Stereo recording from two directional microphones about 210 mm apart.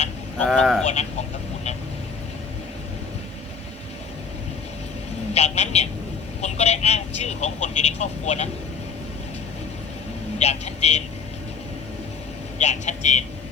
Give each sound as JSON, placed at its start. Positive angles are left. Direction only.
{"t": 0.4, "sound": "speech", "side_deg": 0}
{"t": 5.3, "sound": "speech", "side_deg": 30}
{"t": 10.3, "sound": "speech", "side_deg": 30}
{"t": 12.5, "sound": "speech", "side_deg": 35}